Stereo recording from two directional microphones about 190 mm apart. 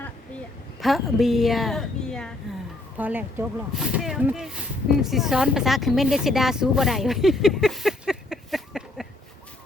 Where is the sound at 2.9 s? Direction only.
10° right (ahead or behind).